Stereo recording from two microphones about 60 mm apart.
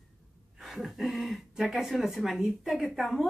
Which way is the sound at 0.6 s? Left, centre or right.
Centre.